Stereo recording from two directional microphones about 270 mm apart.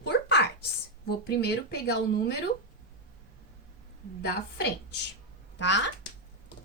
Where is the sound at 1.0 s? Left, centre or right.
Left.